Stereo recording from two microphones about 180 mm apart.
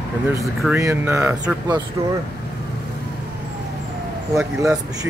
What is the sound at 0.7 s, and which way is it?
Speech, 15° right (ahead or behind).